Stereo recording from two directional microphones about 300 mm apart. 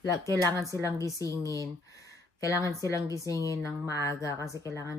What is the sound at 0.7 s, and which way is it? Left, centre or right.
A woman's voice, centre.